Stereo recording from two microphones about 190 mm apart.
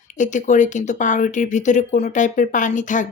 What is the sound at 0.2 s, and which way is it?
A woman's voice, 40° left (ahead or behind).